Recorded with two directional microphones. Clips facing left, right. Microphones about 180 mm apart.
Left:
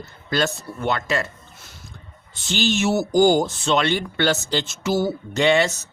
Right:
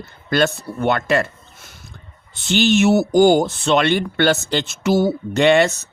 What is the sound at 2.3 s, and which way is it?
Speech, 60° right (ahead or behind).